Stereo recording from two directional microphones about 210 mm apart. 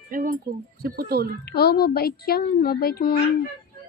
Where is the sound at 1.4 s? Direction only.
50° left (ahead or behind).